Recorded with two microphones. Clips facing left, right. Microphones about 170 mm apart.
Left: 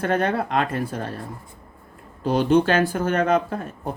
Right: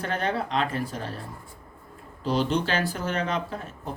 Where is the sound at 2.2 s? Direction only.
50° left (ahead or behind).